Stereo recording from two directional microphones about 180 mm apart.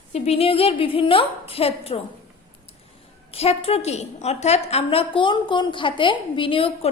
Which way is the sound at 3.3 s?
35° left (ahead or behind).